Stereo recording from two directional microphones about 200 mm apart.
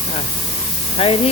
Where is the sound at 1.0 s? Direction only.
30° left (ahead or behind).